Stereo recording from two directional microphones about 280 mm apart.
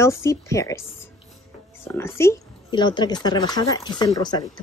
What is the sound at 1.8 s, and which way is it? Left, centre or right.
Speech, centre.